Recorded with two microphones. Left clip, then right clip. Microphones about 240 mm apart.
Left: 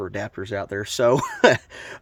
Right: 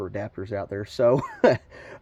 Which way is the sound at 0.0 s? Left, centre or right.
Left.